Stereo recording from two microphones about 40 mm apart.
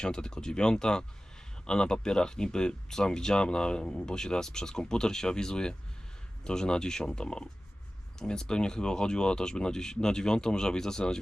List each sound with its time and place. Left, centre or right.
0.0 s speech: centre